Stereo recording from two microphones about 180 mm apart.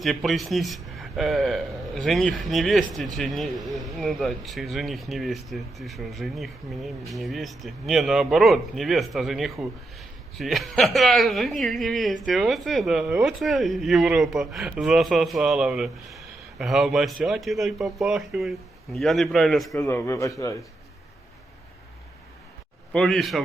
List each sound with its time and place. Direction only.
0.0 s speech: centre (ahead or behind); by 20.6 s 15° left (ahead or behind)
22.9 s speech: centre (ahead or behind)